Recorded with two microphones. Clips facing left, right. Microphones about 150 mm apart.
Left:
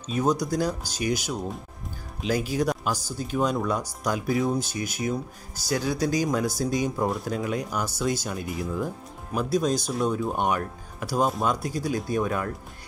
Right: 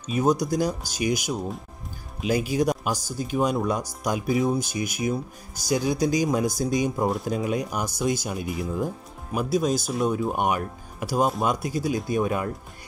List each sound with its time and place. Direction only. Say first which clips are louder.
0.1 s speech: right 2 dB; 10° right (ahead or behind)
4.3 s speech: right 2 dB; centre (ahead or behind)
4.6 s speech: right 2 dB; 15° right (ahead or behind)